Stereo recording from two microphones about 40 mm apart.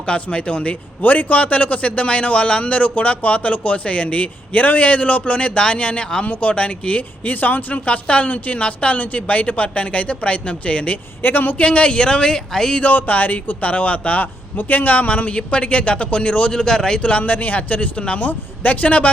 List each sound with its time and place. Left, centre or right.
0.0 s a man's voice: left
1.0 s a man's voice: left
11.2 s speech: left
11.6 s a man's voice: left; by 12.7 s centre
12.7 s a man's voice: left
16.6 s speech: centre
17.0 s a man's voice: left
17.2 s a man's voice: left
18.2 s a man's voice: left